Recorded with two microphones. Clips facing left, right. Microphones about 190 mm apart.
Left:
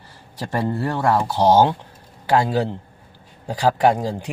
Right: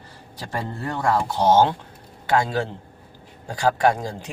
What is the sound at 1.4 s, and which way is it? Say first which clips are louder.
Speech: left 2 dB; 15° left (ahead or behind).